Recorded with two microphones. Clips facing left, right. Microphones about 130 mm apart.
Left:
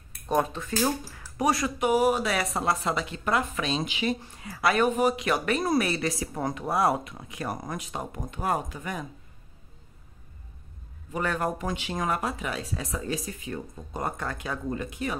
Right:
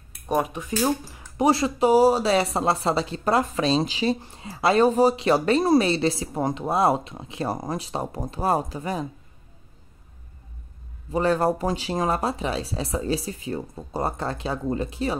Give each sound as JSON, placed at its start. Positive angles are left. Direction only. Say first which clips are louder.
{"t": 0.1, "sound": "speech", "louder": "right 1 dB", "side_deg": -15}
{"t": 11.1, "sound": "speech", "louder": "right 7 dB", "side_deg": -30}